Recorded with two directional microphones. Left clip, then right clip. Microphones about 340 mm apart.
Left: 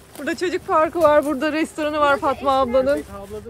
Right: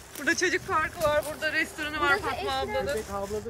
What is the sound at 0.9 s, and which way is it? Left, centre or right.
Speech, centre.